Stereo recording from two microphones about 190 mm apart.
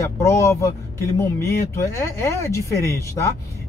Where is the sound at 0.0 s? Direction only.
15° left (ahead or behind).